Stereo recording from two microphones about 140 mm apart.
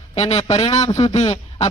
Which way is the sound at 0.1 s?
50° left (ahead or behind).